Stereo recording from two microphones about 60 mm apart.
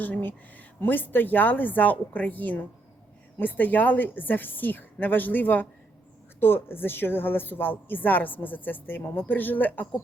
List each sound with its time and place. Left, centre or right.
0.0 s a woman's voice: left